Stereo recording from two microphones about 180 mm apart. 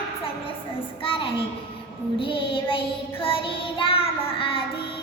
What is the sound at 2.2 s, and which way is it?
Child singing, 30° left (ahead or behind).